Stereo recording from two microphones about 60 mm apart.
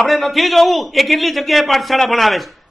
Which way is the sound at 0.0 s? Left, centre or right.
Centre.